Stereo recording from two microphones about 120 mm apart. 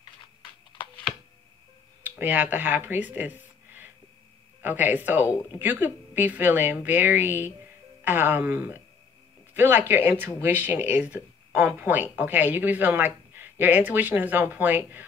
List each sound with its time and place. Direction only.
2.0 s speech: 15° right (ahead or behind)